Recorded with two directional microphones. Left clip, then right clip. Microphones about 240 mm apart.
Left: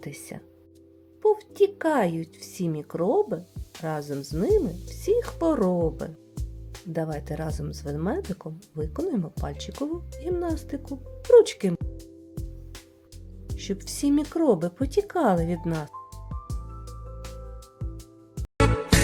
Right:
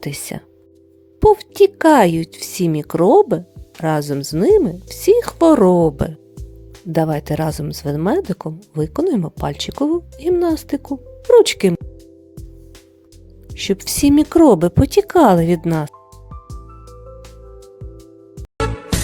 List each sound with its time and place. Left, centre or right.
0.0 s a woman's voice: right
13.6 s a woman's voice: right
16.3 s music: centre